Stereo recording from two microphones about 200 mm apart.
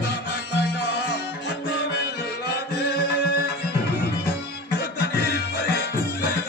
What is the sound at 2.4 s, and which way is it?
Music, 55° left (ahead or behind).